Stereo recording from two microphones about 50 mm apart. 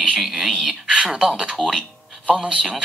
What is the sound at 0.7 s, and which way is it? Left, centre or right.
Speech, centre.